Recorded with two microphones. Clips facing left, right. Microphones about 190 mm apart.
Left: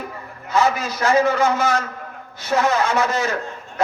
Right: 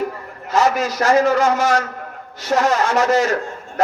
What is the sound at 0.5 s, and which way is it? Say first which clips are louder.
A man's voice: right 2 dB; 45° right (ahead or behind).